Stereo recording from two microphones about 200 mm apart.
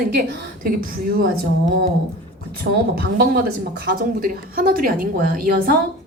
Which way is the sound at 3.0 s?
50° right (ahead or behind).